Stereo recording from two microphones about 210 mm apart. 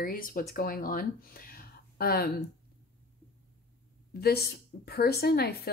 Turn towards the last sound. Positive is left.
turn(degrees=50)  # may be behind; listen again after turning